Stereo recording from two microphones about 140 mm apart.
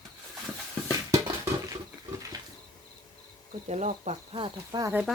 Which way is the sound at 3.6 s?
55° right (ahead or behind).